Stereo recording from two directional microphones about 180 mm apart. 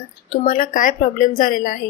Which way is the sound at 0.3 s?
50° left (ahead or behind).